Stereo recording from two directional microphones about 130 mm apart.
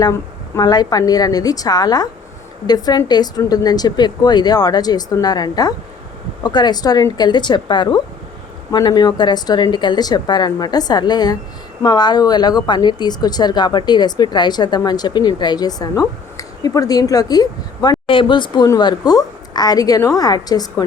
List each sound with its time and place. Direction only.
0.0 s a woman's voice: 25° left (ahead or behind)
18.0 s a woman's voice: 40° left (ahead or behind)